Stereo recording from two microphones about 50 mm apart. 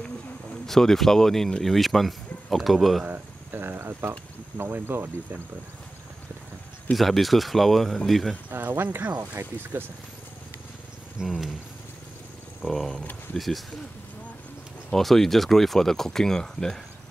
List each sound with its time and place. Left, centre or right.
0.7 s speech: centre
3.1 s speech: right
4.6 s speech: right
7.0 s speech: centre
8.5 s speech: right
11.2 s speech: centre
12.6 s speech: centre
15.0 s speech: centre